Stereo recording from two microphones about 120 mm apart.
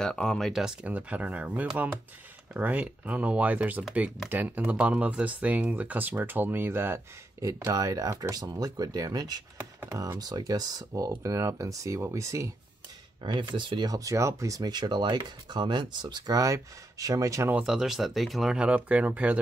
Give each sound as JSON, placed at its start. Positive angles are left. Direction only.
{"t": 0.0, "sound": "speech", "side_deg": 5}
{"t": 0.8, "sound": "speech", "side_deg": -10}
{"t": 13.2, "sound": "speech", "side_deg": -40}
{"t": 17.5, "sound": "speech", "side_deg": -10}